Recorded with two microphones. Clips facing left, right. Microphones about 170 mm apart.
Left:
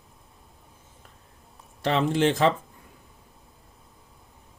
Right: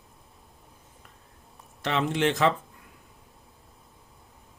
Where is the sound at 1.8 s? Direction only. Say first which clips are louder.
Left 3 dB; 35° left (ahead or behind).